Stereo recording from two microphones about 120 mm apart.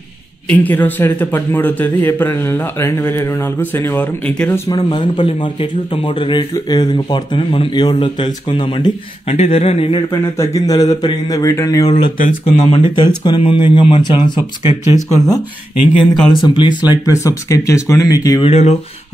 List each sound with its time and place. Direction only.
0.5 s a man's voice: 15° left (ahead or behind)
4.6 s speech: 35° left (ahead or behind)
7.3 s speech: 50° left (ahead or behind)
10.3 s speech: 25° left (ahead or behind)
11.9 s speech: 55° left (ahead or behind)
13.0 s speech: 40° left (ahead or behind)
14.7 s speech: 25° right (ahead or behind)
16.0 s speech: centre (ahead or behind)
16.4 s speech: 40° left (ahead or behind)
16.9 s speech: 25° left (ahead or behind)
18.4 s speech: 60° left (ahead or behind)